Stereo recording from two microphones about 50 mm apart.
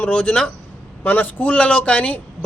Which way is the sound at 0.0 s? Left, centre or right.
Left.